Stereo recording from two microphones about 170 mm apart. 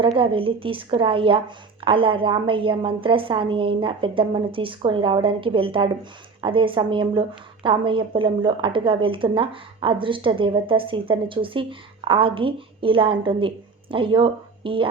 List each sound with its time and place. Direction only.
0.0 s a woman's voice: 30° right (ahead or behind)